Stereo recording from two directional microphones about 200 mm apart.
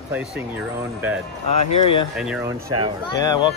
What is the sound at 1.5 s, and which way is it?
Speech, 35° left (ahead or behind).